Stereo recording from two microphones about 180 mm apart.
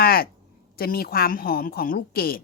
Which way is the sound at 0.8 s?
55° left (ahead or behind).